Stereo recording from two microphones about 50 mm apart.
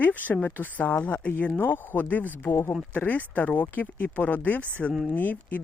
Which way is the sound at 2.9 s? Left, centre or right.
Left.